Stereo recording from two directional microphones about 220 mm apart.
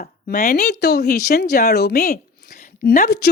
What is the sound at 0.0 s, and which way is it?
Speech, 35° left (ahead or behind).